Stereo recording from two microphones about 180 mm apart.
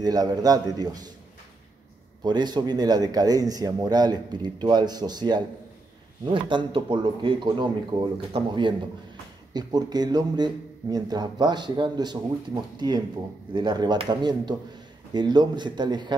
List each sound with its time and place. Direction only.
0.0 s a man's voice: 20° right (ahead or behind)
2.2 s a man's voice: 25° right (ahead or behind)